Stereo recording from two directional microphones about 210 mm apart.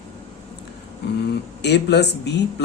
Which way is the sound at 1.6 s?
55° left (ahead or behind).